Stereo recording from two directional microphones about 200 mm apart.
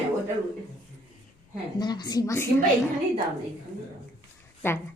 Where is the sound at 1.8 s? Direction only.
20° left (ahead or behind).